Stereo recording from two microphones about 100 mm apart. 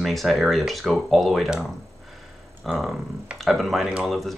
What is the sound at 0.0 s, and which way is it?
Speech, centre (ahead or behind).